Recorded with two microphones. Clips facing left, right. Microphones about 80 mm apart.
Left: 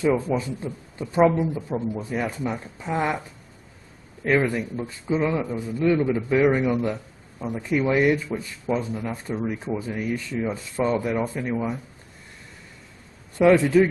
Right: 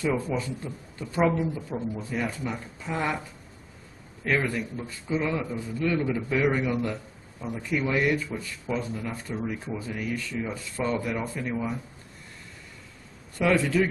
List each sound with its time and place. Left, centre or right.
0.0 s speech: left
4.2 s speech: left
13.4 s speech: centre